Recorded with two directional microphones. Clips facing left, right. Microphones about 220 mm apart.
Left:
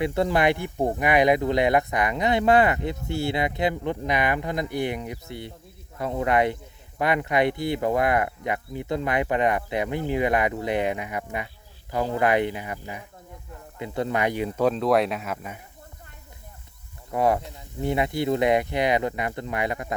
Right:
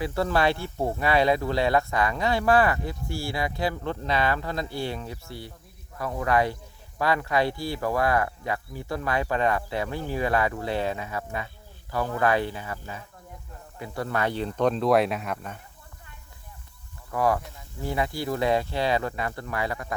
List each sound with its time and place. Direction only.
0.0 s speech: 20° left (ahead or behind)
17.1 s speech: 20° left (ahead or behind)